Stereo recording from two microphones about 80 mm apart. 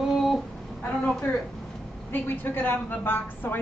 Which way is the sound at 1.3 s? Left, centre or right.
Left.